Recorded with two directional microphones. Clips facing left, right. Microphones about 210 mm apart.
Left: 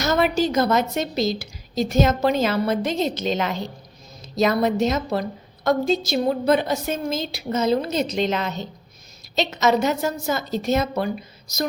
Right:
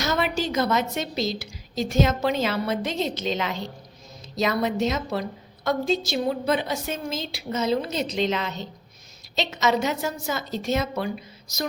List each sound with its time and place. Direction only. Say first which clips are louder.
0.0 s a woman's voice: left 5 dB; 40° left (ahead or behind)